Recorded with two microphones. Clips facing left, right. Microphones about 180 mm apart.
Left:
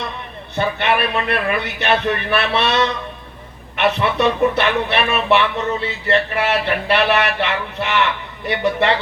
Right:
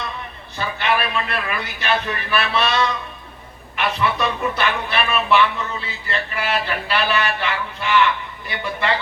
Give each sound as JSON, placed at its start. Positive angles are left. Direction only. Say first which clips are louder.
{"t": 0.5, "sound": "a man's voice", "louder": "left 4 dB", "side_deg": 65}
{"t": 3.8, "sound": "music", "louder": "left 4 dB", "side_deg": 65}